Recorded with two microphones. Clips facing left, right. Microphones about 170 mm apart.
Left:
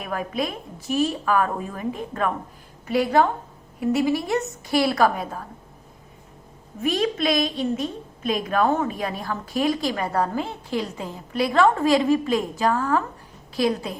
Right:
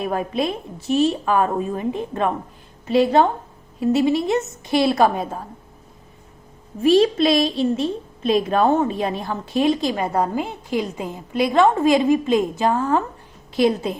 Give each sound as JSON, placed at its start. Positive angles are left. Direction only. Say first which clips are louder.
{"t": 0.0, "sound": "a woman's voice", "louder": "right 5 dB", "side_deg": -25}
{"t": 6.8, "sound": "a woman's voice", "louder": "right 7 dB", "side_deg": -30}